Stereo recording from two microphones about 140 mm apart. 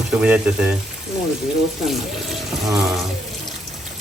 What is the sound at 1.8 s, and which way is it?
Speech, centre (ahead or behind).